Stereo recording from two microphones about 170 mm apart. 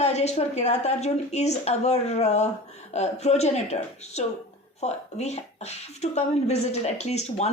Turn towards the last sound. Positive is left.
turn(degrees=40)  # may be behind; listen again after turning